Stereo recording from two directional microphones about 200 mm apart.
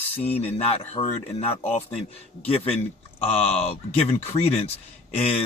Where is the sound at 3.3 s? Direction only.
30° left (ahead or behind).